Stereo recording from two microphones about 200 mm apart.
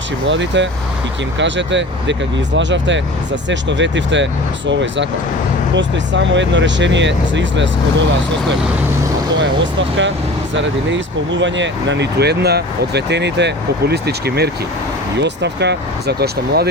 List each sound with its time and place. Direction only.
0.3 s speech: 65° right (ahead or behind)
9.3 s speech: 65° right (ahead or behind)